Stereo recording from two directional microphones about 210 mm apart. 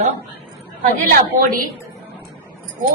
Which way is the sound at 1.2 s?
40° right (ahead or behind).